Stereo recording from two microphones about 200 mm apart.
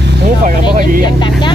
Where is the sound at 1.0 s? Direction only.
25° left (ahead or behind).